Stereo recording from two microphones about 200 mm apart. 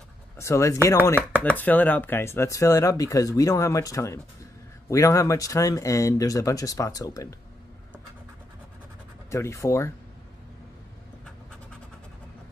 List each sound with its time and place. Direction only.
0.4 s speech: 15° left (ahead or behind)
9.3 s speech: 15° left (ahead or behind)